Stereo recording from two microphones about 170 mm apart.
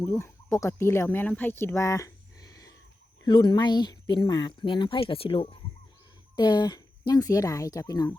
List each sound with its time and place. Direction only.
0.0 s speech: 15° left (ahead or behind)